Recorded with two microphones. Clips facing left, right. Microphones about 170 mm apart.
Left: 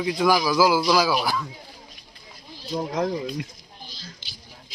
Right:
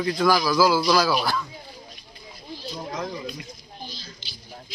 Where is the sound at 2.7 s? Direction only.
50° left (ahead or behind).